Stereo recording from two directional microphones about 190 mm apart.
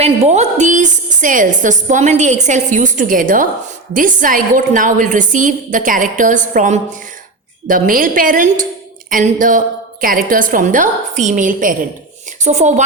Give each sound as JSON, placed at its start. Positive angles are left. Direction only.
{"t": 0.0, "sound": "a woman's voice", "side_deg": -35}